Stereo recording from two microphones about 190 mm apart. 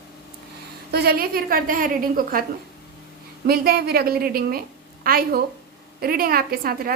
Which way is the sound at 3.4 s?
55° right (ahead or behind).